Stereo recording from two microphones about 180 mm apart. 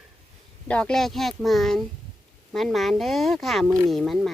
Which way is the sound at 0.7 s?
5° left (ahead or behind).